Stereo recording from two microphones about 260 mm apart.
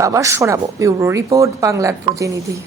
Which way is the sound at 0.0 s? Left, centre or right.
Centre.